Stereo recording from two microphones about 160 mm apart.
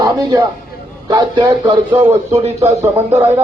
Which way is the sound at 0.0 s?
25° right (ahead or behind).